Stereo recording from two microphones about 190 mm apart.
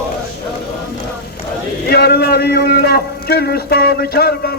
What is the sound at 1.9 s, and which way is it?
A man's voice, 60° left (ahead or behind).